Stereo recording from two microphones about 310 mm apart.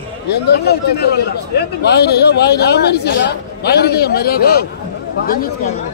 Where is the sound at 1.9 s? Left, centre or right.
Left.